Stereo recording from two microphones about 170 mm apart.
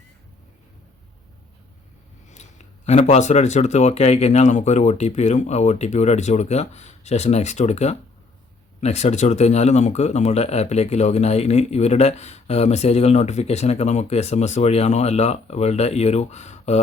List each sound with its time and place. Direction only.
2.3 s speech: 40° left (ahead or behind)